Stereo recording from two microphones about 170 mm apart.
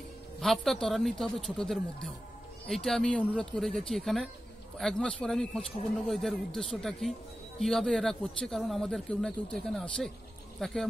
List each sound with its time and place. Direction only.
0.4 s speech: centre (ahead or behind)